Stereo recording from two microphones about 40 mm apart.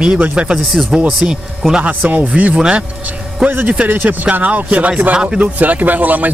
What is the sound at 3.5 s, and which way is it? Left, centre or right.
Speech, right.